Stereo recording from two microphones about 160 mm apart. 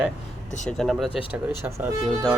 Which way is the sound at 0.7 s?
Centre (ahead or behind).